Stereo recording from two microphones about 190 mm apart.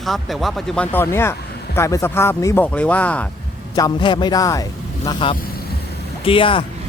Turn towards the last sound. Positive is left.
turn(degrees=25)  # may be behind; listen again after turning